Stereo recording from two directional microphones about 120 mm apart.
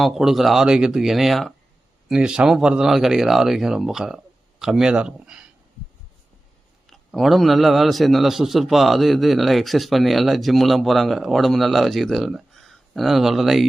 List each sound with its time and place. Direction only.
0.0 s a man's voice: centre (ahead or behind)
6.8 s a man's voice: centre (ahead or behind)